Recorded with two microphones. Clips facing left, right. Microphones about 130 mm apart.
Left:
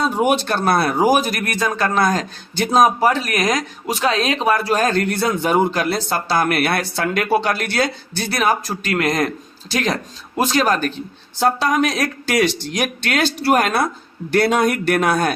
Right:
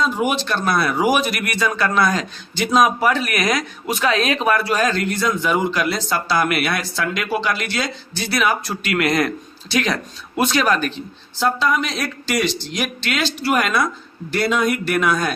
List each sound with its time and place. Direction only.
0.0 s a man's voice: 55° left (ahead or behind)
2.8 s speech: 35° left (ahead or behind)
14.3 s speech: 60° left (ahead or behind)